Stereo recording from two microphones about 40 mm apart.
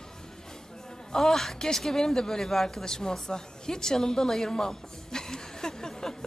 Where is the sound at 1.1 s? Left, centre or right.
Centre.